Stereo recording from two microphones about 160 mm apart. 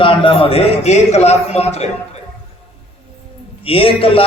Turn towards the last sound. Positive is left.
turn(degrees=35)  # may be behind; listen again after turning